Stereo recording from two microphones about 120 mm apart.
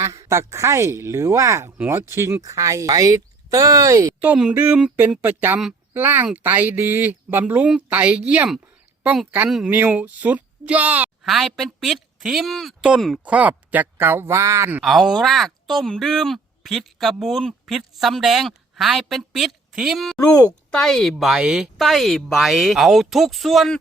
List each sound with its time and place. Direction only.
0.0 s speech: 25° right (ahead or behind)
4.4 s speech: 10° right (ahead or behind)
9.6 s speech: 15° right (ahead or behind)
11.3 s speech: centre (ahead or behind)
13.2 s speech: 10° right (ahead or behind)
14.8 s speech: 5° right (ahead or behind)